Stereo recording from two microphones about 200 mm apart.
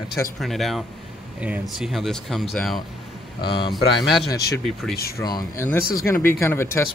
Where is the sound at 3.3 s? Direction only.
25° left (ahead or behind).